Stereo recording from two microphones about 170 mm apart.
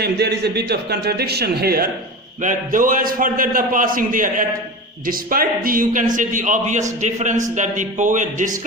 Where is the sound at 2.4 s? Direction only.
50° right (ahead or behind).